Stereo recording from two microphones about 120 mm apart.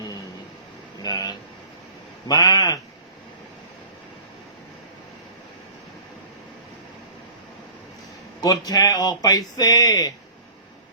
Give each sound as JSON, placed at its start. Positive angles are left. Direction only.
{"t": 1.0, "sound": "air conditioning", "side_deg": 35}
{"t": 2.2, "sound": "speech", "side_deg": 30}
{"t": 8.4, "sound": "speech", "side_deg": 35}